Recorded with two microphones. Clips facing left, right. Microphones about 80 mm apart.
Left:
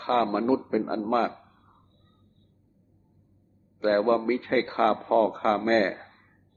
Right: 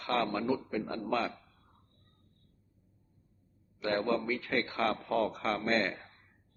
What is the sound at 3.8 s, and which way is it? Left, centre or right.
A man's voice, left.